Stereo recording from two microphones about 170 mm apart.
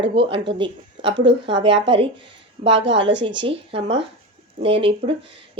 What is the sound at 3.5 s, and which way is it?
A woman's voice, 30° right (ahead or behind).